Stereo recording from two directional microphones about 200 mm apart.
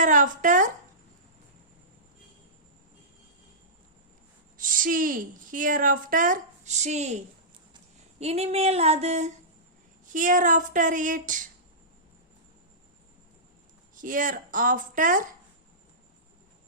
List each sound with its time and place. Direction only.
0.0 s speech: 40° right (ahead or behind)
4.5 s a woman's voice: 40° right (ahead or behind)
8.2 s a sound: 30° right (ahead or behind)
13.9 s a woman's voice: 40° right (ahead or behind)